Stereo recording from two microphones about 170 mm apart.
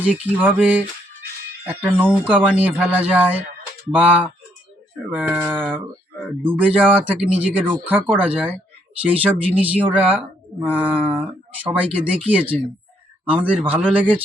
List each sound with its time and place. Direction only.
0.0 s speech: 10° right (ahead or behind)